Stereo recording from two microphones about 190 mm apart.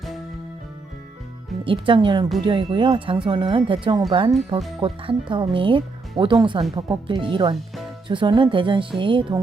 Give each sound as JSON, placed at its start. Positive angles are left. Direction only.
{"t": 1.6, "sound": "speech", "side_deg": -25}